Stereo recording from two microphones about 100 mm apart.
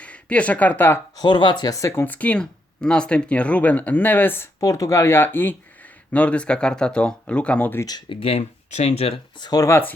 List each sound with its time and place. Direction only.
0.0 s speech: 15° left (ahead or behind)
1.1 s speech: 45° left (ahead or behind)
2.0 s speech: 15° left (ahead or behind)
4.6 s speech: 30° left (ahead or behind); by 7.8 s 15° left (ahead or behind)
7.9 s speech: 45° left (ahead or behind)
8.2 s speech: 85° left
9.4 s speech: 40° left (ahead or behind)
9.6 s speech: 25° left (ahead or behind)